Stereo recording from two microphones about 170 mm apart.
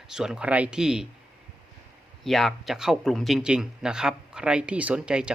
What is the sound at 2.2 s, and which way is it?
Speech, centre (ahead or behind).